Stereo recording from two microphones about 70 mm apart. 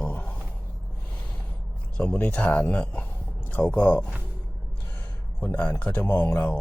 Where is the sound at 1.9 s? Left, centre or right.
Centre.